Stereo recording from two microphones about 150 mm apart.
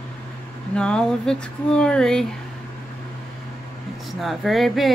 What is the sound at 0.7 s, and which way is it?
Speech, 5° left (ahead or behind).